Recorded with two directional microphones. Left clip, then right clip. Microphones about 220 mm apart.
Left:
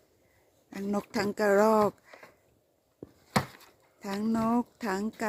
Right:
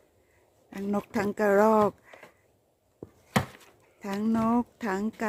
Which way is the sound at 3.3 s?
Centre (ahead or behind).